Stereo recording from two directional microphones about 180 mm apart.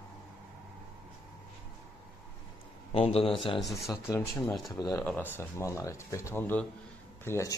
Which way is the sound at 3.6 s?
Centre (ahead or behind).